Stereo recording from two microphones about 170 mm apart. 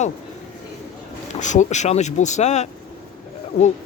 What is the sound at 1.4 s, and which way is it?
Speech, 45° left (ahead or behind).